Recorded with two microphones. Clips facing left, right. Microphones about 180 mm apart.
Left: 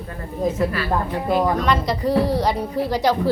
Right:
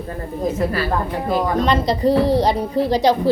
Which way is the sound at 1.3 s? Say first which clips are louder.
Right 1 dB; 25° right (ahead or behind).